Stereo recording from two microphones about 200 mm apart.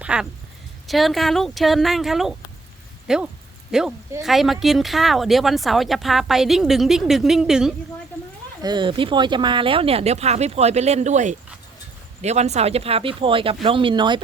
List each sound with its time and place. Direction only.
0.0 s speech: 5° right (ahead or behind)
8.6 s speech: 25° right (ahead or behind)